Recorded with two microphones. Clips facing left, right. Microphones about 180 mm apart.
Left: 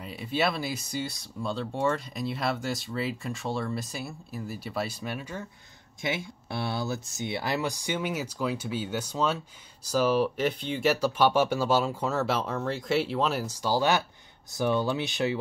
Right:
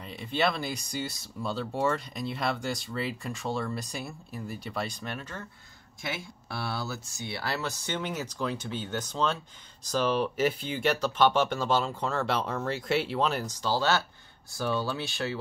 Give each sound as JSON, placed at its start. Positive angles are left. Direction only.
{"t": 0.0, "sound": "speech", "side_deg": 5}
{"t": 6.0, "sound": "speech", "side_deg": 20}